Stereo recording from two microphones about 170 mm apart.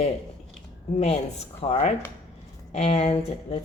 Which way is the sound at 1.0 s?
40° left (ahead or behind).